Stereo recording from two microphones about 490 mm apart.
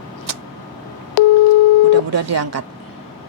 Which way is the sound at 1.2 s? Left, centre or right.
Left.